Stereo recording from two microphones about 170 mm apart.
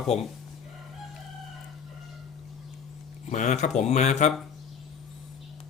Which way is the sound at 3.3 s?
45° left (ahead or behind).